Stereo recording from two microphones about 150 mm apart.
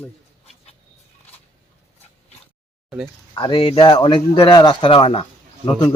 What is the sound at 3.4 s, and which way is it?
Speech, 35° left (ahead or behind).